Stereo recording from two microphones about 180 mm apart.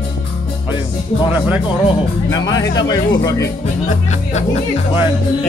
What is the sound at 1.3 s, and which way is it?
Speech, 10° right (ahead or behind).